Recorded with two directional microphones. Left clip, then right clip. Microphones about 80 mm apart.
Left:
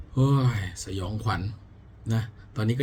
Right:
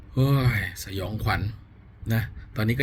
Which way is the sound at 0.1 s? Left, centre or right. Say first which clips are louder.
Right 1 dB; centre.